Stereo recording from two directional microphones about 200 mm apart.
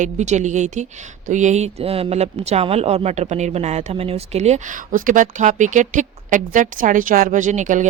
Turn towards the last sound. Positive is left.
turn(degrees=-35)  # may be behind; listen again after turning